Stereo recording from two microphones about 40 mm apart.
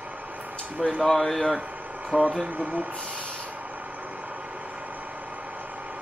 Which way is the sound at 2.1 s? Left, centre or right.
Right.